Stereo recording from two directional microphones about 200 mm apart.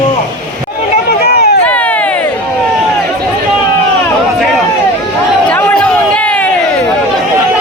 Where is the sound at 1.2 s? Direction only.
50° left (ahead or behind).